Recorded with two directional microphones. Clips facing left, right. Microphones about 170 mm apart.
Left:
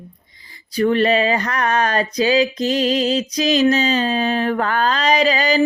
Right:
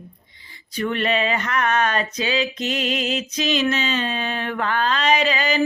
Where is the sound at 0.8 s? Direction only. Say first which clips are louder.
Left 6 dB; 35° left (ahead or behind).